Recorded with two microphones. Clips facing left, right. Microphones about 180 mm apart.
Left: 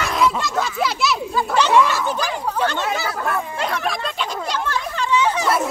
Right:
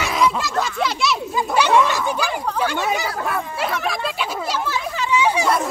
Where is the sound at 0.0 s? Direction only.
Centre (ahead or behind).